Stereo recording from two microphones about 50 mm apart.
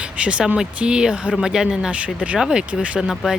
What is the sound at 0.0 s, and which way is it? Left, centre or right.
Vehicle, right.